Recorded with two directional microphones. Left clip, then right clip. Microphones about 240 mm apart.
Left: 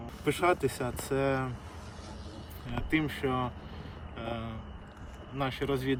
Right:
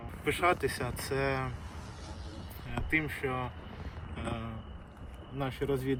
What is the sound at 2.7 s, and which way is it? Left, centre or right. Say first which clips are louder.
Speech: left 1 dB; centre.